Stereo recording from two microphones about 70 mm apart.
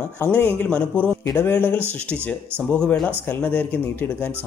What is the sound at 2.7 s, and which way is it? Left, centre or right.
Speech, centre.